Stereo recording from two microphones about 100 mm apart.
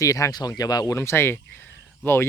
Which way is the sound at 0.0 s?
35° left (ahead or behind).